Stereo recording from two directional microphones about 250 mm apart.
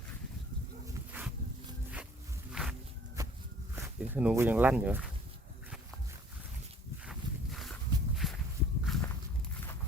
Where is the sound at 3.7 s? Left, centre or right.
Centre.